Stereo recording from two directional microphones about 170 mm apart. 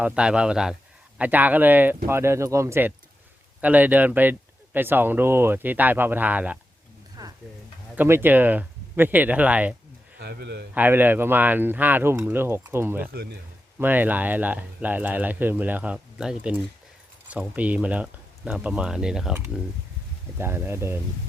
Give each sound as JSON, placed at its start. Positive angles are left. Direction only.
{"t": 0.0, "sound": "speech", "side_deg": -5}
{"t": 7.2, "sound": "stir", "side_deg": -20}
{"t": 7.9, "sound": "speech", "side_deg": -15}
{"t": 10.2, "sound": "speech", "side_deg": -70}
{"t": 10.8, "sound": "speech", "side_deg": -10}
{"t": 20.4, "sound": "speech", "side_deg": -15}